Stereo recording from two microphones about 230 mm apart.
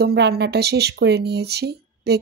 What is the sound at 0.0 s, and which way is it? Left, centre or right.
Speech, right.